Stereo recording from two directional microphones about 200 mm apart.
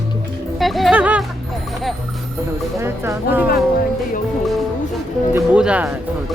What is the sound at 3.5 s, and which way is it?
Speech, 45° left (ahead or behind).